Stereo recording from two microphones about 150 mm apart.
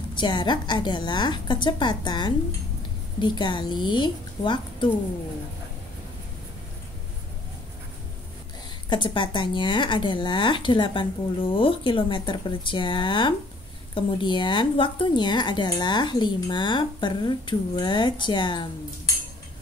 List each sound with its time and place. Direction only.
0.1 s a woman's voice: 30° left (ahead or behind)
8.8 s speech: 30° left (ahead or behind)